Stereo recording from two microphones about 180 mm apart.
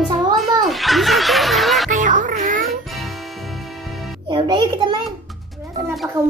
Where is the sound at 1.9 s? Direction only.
45° right (ahead or behind).